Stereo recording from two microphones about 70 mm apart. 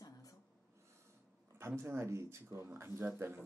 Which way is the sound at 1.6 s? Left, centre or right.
Right.